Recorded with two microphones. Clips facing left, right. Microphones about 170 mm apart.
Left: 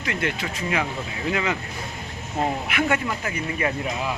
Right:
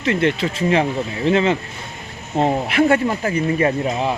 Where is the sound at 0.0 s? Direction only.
25° right (ahead or behind).